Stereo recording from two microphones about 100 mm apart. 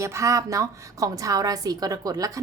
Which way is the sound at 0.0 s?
30° right (ahead or behind).